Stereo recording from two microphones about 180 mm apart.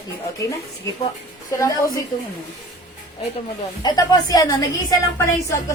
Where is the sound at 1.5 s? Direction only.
15° left (ahead or behind).